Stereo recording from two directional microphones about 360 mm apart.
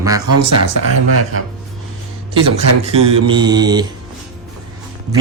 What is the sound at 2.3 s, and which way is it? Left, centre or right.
Speech, centre.